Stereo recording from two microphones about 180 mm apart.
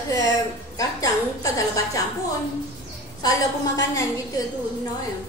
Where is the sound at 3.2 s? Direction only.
20° left (ahead or behind).